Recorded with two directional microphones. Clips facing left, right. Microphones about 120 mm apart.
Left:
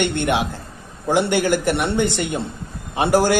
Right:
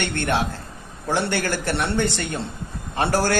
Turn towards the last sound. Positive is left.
turn(degrees=15)  # may be behind; listen again after turning